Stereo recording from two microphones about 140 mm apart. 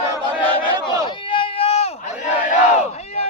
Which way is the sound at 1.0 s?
40° left (ahead or behind).